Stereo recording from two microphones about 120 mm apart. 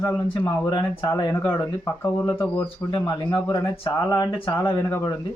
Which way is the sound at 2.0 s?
15° left (ahead or behind).